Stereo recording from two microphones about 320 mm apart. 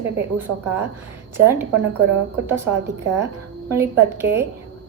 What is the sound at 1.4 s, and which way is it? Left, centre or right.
Speech, centre.